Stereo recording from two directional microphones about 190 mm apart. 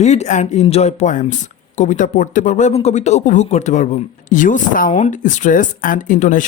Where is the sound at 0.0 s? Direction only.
35° left (ahead or behind).